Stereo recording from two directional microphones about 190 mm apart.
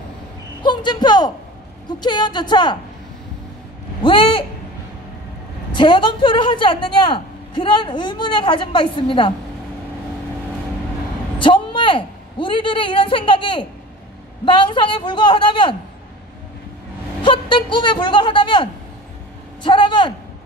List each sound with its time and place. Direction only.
0.6 s a woman's voice: 25° left (ahead or behind)
4.0 s a man's voice: 25° left (ahead or behind)
5.7 s a woman's voice: 25° left (ahead or behind)
11.3 s a woman's voice: 25° left (ahead or behind)
17.2 s a woman's voice: 25° left (ahead or behind)